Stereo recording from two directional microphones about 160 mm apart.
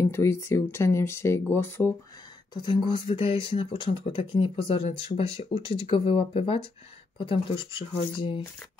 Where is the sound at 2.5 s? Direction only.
30° left (ahead or behind).